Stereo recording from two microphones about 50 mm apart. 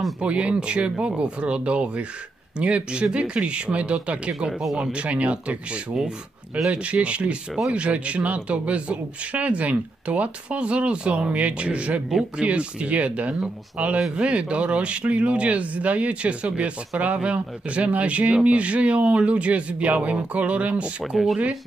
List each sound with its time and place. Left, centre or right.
0.2 s speech: right
4.5 s speech: centre
4.9 s speech: right